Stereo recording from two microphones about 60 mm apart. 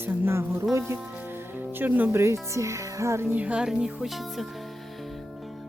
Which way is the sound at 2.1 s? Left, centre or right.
Right.